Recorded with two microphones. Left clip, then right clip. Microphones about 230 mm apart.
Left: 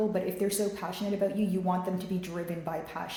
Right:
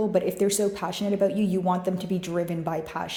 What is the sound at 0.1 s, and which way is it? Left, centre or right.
A woman's voice, right.